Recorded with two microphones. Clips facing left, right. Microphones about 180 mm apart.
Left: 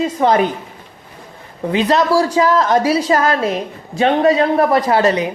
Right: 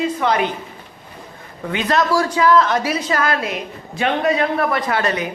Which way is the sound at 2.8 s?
30° left (ahead or behind).